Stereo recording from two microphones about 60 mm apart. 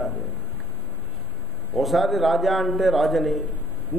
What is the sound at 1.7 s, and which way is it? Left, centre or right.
A man's voice, centre.